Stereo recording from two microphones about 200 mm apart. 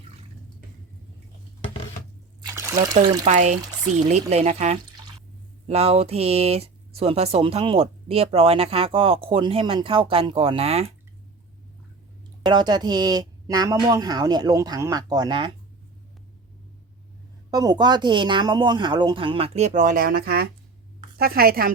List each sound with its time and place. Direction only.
2.4 s water: 15° right (ahead or behind)
3.2 s speech: 35° right (ahead or behind)
12.5 s speech: 20° right (ahead or behind)
17.5 s a woman's voice: 20° right (ahead or behind); by 21.7 s 50° right (ahead or behind)